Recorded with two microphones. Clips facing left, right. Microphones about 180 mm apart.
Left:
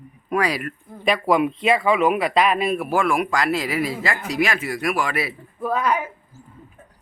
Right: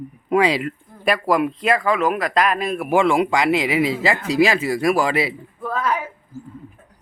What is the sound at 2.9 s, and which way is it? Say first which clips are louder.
Speech: right 8 dB; 25° right (ahead or behind).